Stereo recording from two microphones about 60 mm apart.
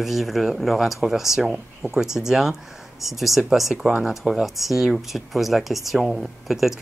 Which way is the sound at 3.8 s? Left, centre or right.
Centre.